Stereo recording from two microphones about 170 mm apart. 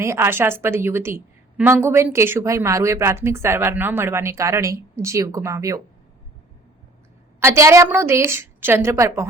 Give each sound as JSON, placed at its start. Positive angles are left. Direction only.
{"t": 0.0, "sound": "a woman's voice", "side_deg": -15}
{"t": 7.3, "sound": "a woman's voice", "side_deg": -15}